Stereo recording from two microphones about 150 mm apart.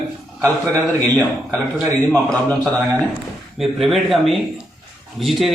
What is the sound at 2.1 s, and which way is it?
A man's voice, 5° left (ahead or behind).